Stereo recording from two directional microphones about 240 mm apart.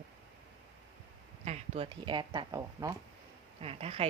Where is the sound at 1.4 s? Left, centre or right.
Right.